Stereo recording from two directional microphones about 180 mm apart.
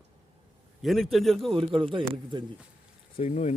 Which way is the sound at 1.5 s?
30° right (ahead or behind).